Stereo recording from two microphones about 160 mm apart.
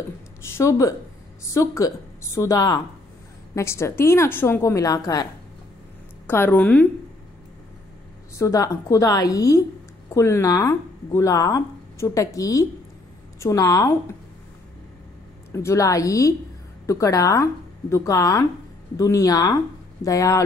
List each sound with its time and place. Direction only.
0.6 s a woman's voice: 20° left (ahead or behind)
6.2 s a woman's voice: 15° left (ahead or behind)
8.4 s speech: 20° left (ahead or behind)
15.5 s speech: 20° left (ahead or behind)